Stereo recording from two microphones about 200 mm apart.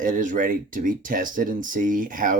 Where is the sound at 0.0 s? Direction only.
40° right (ahead or behind).